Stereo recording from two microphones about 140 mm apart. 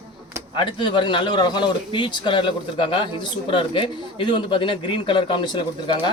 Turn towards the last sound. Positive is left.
turn(degrees=35)  # may be behind; listen again after turning